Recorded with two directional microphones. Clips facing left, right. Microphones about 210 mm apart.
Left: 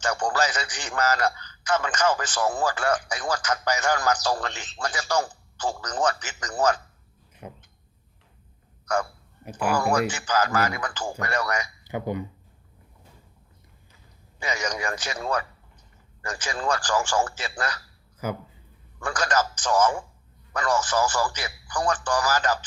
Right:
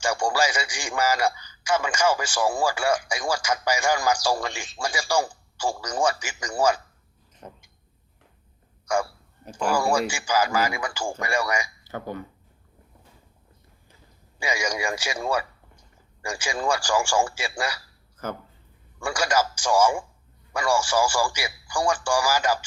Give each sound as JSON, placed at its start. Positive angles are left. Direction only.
{"t": 0.0, "sound": "a man's voice", "side_deg": -10}
{"t": 7.4, "sound": "speech", "side_deg": 10}
{"t": 8.9, "sound": "a man's voice", "side_deg": -10}
{"t": 9.4, "sound": "speech", "side_deg": 5}
{"t": 9.7, "sound": "a man's voice", "side_deg": -10}
{"t": 11.9, "sound": "speech", "side_deg": 15}
{"t": 14.3, "sound": "a man's voice", "side_deg": -10}
{"t": 18.2, "sound": "speech", "side_deg": 10}
{"t": 18.9, "sound": "a man's voice", "side_deg": -10}